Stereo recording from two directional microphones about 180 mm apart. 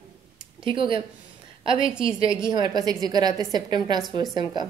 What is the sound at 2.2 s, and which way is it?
Speech, 20° left (ahead or behind).